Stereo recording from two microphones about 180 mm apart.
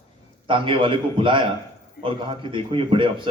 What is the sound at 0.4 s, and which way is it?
A man's voice, 30° right (ahead or behind).